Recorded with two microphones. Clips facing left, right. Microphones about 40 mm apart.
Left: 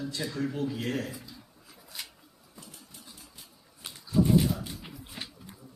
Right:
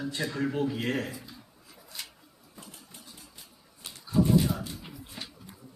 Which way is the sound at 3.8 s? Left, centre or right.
Centre.